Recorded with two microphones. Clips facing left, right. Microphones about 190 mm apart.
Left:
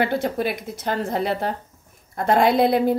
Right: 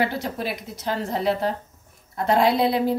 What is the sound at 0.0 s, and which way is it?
A woman's voice, 55° left (ahead or behind).